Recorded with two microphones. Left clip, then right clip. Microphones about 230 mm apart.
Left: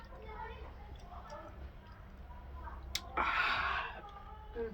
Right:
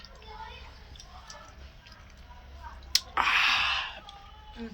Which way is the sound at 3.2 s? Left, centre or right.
Centre.